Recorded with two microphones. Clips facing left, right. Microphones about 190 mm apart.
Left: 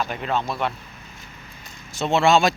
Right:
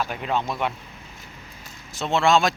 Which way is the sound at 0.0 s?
5° right (ahead or behind).